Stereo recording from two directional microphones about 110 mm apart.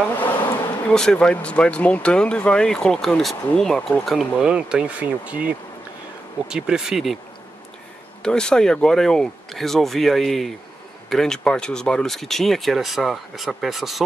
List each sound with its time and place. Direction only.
0.2 s bee: 15° left (ahead or behind)
0.9 s speech: 5° left (ahead or behind)
8.2 s speech: 5° left (ahead or behind)